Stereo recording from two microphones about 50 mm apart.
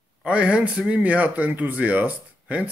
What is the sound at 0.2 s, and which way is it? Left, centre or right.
Speech, right.